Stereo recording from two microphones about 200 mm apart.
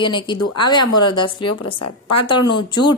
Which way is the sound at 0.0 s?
25° left (ahead or behind).